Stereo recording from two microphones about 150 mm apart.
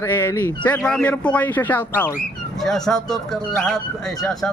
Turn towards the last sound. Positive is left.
turn(degrees=5)  # may be behind; listen again after turning